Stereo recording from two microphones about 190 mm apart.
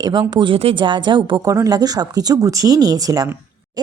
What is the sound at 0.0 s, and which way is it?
A woman's voice, 20° right (ahead or behind).